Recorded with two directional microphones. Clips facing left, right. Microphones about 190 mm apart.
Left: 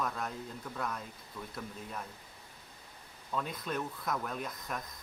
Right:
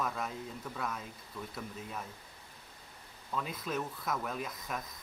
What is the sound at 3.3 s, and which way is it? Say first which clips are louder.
Speech: even; centre (ahead or behind).